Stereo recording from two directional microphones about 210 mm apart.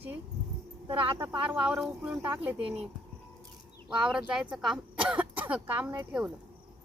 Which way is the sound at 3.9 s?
5° right (ahead or behind).